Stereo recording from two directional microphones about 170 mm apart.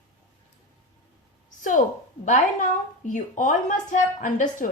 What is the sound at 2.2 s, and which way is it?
Speech, 45° left (ahead or behind).